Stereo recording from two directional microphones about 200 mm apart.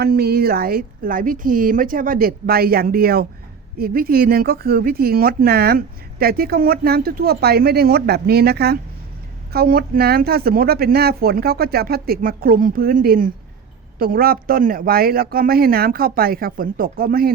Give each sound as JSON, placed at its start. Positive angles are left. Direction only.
{"t": 0.0, "sound": "speech", "side_deg": -50}